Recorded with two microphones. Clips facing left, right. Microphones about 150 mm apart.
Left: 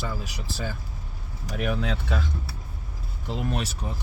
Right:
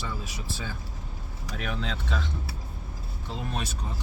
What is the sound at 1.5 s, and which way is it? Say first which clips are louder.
Speech: left 6 dB; 10° left (ahead or behind).